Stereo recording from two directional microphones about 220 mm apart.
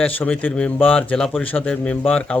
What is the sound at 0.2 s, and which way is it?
Speech, 5° left (ahead or behind).